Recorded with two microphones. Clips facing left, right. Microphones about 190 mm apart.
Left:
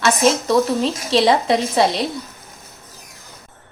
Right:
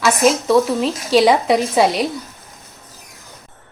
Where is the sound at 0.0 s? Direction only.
5° right (ahead or behind).